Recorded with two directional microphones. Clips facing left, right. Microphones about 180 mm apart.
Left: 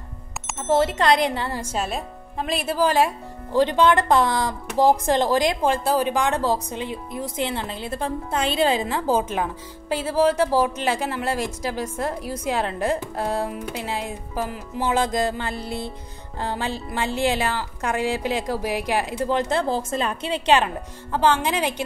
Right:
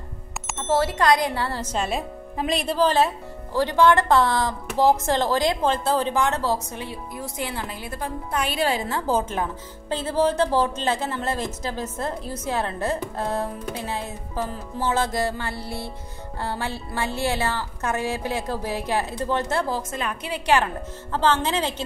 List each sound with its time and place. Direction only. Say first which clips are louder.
0.7 s speech: left 1 dB; 20° left (ahead or behind)
19.7 s a woman's voice: left 4 dB; 30° left (ahead or behind); by 21.8 s 15° left (ahead or behind)